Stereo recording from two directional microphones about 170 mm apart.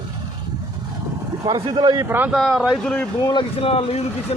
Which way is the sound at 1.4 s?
25° right (ahead or behind).